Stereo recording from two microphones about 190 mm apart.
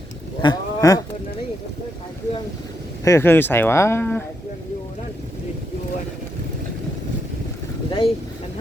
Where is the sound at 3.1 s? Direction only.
10° left (ahead or behind).